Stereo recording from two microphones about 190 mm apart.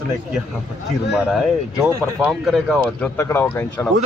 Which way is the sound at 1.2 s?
5° right (ahead or behind).